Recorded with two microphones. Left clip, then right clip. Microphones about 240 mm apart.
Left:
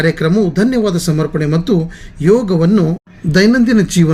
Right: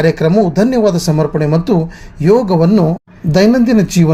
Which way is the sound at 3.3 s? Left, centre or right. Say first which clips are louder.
Right 1 dB; centre.